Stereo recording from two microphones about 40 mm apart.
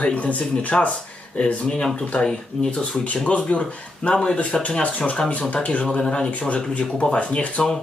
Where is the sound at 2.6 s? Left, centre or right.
Centre.